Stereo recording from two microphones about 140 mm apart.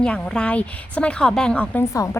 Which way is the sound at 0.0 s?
5° left (ahead or behind).